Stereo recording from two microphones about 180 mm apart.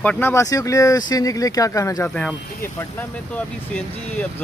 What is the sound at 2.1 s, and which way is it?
Speech, 5° left (ahead or behind).